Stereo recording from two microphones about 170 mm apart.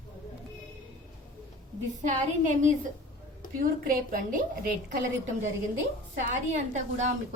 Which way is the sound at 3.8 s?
55° right (ahead or behind).